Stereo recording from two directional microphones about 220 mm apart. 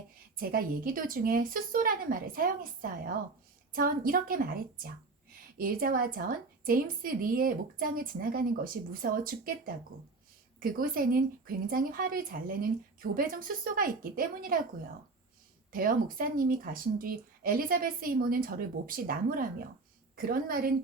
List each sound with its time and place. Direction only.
0.3 s a woman's voice: 40° right (ahead or behind)
15.7 s a woman's voice: 40° right (ahead or behind)